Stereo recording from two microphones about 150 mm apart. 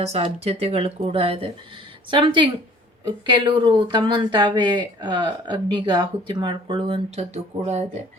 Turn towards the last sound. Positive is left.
turn(degrees=-50)  # may be behind; listen again after turning